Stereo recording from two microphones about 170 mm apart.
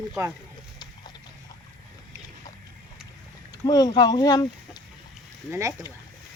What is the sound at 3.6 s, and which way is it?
Speech, 25° left (ahead or behind).